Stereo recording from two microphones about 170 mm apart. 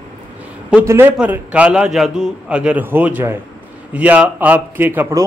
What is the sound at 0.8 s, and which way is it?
A man's voice, 15° right (ahead or behind).